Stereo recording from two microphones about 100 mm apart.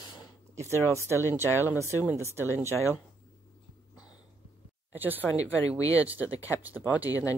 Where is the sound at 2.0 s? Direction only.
25° right (ahead or behind).